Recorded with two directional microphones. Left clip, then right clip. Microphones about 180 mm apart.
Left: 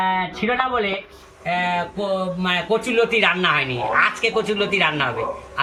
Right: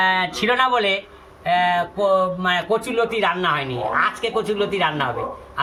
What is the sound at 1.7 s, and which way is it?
A man's voice, 15° right (ahead or behind).